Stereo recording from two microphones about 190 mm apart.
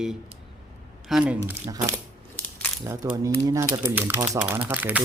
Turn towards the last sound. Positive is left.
turn(degrees=-10)  # may be behind; listen again after turning